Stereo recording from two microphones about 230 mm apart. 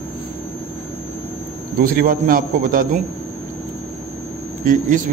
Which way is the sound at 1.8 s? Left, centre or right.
Right.